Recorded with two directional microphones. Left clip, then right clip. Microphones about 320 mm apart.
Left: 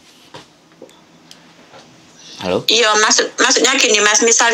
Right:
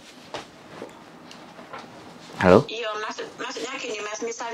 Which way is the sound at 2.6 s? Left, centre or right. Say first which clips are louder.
Left 18 dB; left.